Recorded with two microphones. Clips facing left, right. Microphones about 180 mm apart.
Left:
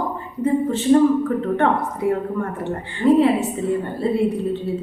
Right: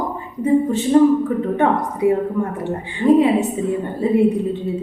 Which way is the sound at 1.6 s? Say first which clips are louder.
Right 3 dB; 15° right (ahead or behind).